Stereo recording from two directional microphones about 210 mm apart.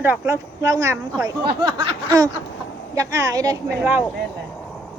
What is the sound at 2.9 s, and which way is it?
Speech, 15° right (ahead or behind).